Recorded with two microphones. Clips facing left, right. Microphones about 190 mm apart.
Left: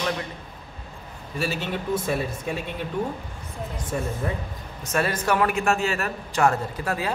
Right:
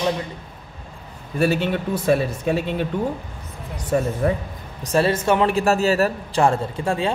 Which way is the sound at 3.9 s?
70° right (ahead or behind).